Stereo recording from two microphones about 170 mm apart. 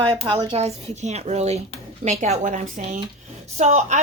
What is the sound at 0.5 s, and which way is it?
A woman's voice, 35° right (ahead or behind).